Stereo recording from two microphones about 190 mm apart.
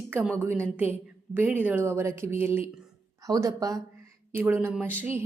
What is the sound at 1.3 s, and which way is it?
A woman's voice, 10° right (ahead or behind).